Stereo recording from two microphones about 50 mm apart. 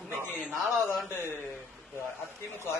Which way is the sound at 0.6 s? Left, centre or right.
Centre.